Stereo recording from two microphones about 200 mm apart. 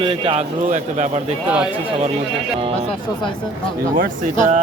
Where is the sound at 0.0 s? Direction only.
25° right (ahead or behind).